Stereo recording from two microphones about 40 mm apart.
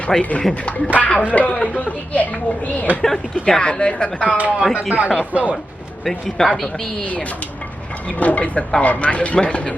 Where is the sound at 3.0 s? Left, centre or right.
Centre.